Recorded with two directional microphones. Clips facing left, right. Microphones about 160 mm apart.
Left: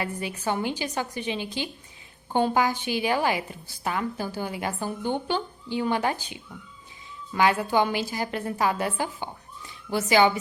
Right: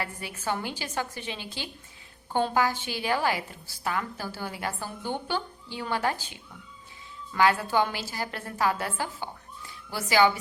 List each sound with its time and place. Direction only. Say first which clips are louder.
0.0 s a woman's voice: left 4 dB; 20° left (ahead or behind)